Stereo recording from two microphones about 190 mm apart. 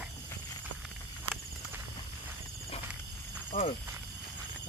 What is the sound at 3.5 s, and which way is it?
Speech, 45° left (ahead or behind).